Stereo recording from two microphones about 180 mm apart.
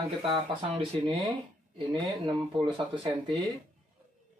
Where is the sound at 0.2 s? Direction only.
25° right (ahead or behind).